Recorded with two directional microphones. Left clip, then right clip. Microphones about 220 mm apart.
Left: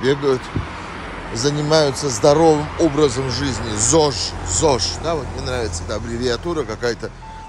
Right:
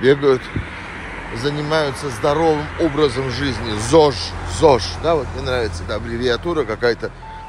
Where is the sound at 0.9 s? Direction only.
50° left (ahead or behind).